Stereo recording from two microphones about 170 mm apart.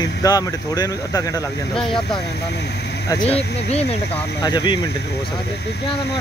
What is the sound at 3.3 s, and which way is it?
Speech, 35° left (ahead or behind).